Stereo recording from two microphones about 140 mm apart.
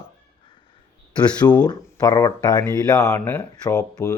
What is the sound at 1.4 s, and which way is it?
Speech, 30° left (ahead or behind).